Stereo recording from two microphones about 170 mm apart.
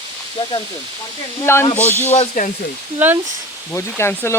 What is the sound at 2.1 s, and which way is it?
Speech, 50° left (ahead or behind).